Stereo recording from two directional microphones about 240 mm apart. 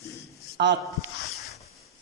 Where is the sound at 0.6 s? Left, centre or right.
Right.